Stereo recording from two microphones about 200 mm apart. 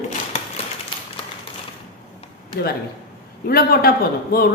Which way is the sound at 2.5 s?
50° left (ahead or behind).